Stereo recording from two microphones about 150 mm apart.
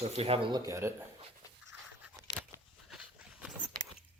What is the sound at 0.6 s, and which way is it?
Speech, 20° right (ahead or behind).